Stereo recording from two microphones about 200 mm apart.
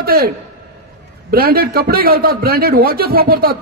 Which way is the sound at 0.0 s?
50° right (ahead or behind).